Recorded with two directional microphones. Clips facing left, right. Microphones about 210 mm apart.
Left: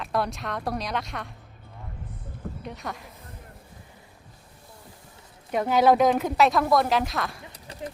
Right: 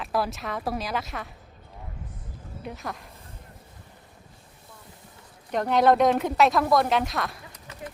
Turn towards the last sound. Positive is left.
turn(degrees=35)  # may be behind; listen again after turning